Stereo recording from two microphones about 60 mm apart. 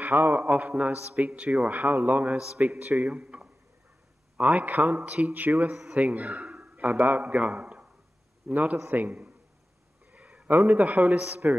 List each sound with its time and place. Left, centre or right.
0.0 s a man's voice: right
2.3 s a man's voice: centre
2.6 s a man's voice: right
4.6 s a man's voice: right
10.1 s a sound: right
10.7 s a man's voice: right
11.2 s a woman's voice: right